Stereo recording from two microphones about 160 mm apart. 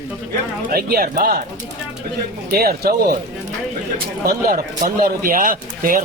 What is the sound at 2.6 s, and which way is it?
Speech, 70° right (ahead or behind).